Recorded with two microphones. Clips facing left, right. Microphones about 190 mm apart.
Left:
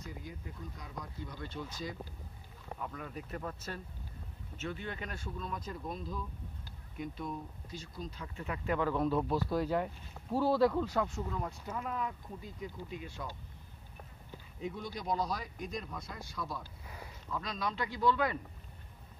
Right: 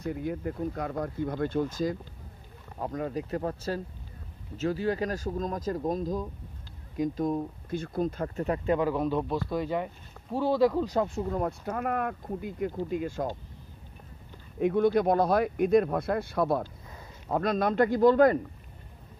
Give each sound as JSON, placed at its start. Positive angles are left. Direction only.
{"t": 0.0, "sound": "speech", "side_deg": -60}
{"t": 2.8, "sound": "speech", "side_deg": -35}
{"t": 8.6, "sound": "speech", "side_deg": -20}
{"t": 9.3, "sound": "speech", "side_deg": 5}
{"t": 11.2, "sound": "speech", "side_deg": -50}
{"t": 14.6, "sound": "speech", "side_deg": -65}